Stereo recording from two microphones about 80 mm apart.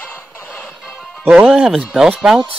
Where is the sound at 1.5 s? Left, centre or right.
Centre.